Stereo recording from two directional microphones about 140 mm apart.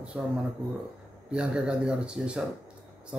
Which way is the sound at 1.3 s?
5° right (ahead or behind).